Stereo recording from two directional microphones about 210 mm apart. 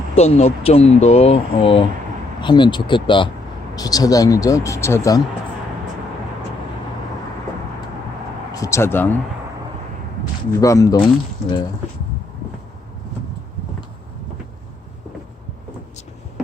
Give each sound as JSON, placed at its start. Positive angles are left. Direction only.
{"t": 0.1, "sound": "speech", "side_deg": 30}
{"t": 8.5, "sound": "speech", "side_deg": 15}
{"t": 10.6, "sound": "speech", "side_deg": 15}